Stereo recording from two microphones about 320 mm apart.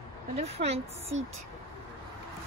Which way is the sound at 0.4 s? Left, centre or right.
Centre.